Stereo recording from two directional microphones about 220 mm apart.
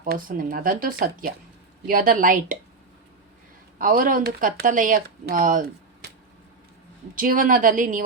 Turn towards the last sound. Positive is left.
turn(degrees=-35)  # may be behind; listen again after turning